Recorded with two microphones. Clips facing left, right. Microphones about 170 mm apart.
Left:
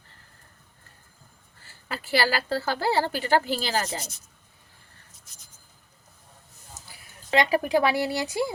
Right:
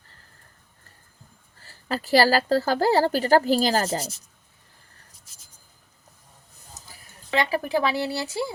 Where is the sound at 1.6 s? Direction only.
40° right (ahead or behind).